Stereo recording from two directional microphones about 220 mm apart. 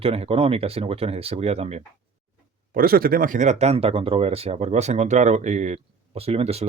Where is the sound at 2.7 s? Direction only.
40° right (ahead or behind).